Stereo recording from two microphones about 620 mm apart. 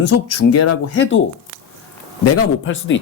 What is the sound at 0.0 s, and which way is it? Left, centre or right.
Speech, left.